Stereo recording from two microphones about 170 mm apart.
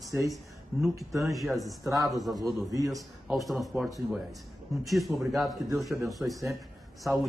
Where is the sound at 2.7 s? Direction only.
20° right (ahead or behind).